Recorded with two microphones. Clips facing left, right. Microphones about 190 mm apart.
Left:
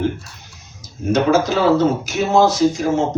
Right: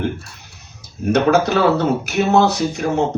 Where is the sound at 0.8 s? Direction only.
65° right (ahead or behind).